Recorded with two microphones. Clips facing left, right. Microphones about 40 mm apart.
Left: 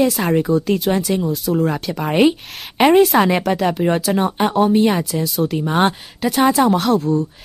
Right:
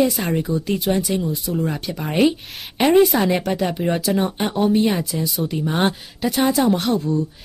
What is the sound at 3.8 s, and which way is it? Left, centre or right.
Speech, centre.